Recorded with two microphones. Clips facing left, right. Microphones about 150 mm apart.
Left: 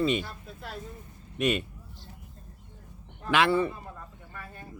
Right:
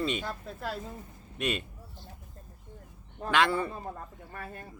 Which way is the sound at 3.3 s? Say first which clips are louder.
Left 3 dB; 5° left (ahead or behind).